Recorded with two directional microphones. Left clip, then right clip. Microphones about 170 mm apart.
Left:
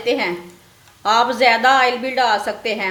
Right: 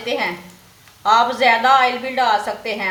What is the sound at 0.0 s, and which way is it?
A woman's voice, 55° left (ahead or behind).